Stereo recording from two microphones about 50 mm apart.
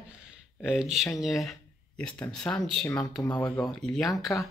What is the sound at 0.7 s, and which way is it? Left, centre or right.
Speech, centre.